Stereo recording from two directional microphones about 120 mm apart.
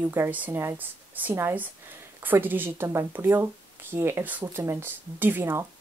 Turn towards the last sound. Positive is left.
turn(degrees=-20)  # may be behind; listen again after turning